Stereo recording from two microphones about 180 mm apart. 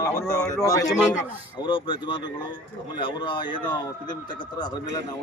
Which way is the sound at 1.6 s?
30° left (ahead or behind).